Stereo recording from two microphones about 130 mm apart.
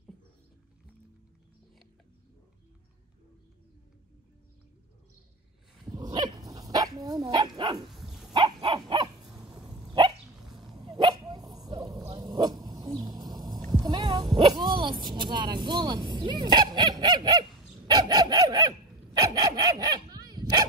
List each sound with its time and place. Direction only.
6.1 s dog: 30° right (ahead or behind)
7.9 s dog: centre (ahead or behind)
8.3 s dog: 35° right (ahead or behind)
10.4 s dog: centre (ahead or behind)
10.8 s dog: 30° right (ahead or behind)
12.1 s a sound: 35° right (ahead or behind)
13.8 s dog: 35° right (ahead or behind)
15.1 s honk: 35° right (ahead or behind)